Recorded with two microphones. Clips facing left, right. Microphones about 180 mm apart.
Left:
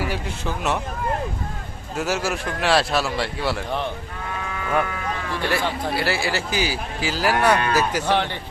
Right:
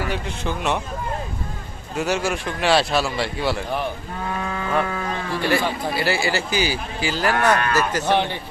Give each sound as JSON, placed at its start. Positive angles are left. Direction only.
{"t": 0.0, "sound": "speech", "side_deg": 5}
{"t": 2.0, "sound": "speech", "side_deg": 0}
{"t": 4.4, "sound": "cattle", "side_deg": -35}
{"t": 5.4, "sound": "a man's voice", "side_deg": 0}
{"t": 8.0, "sound": "a man's voice", "side_deg": -15}